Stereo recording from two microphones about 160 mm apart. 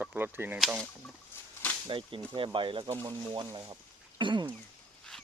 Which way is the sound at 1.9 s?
35° right (ahead or behind).